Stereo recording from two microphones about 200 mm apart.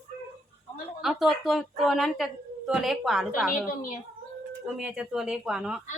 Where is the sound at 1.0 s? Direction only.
Centre (ahead or behind).